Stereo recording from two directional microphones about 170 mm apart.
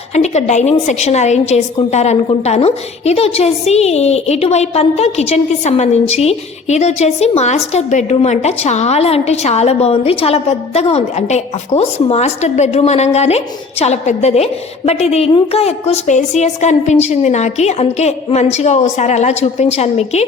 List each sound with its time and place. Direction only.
0.1 s a woman's voice: 40° left (ahead or behind)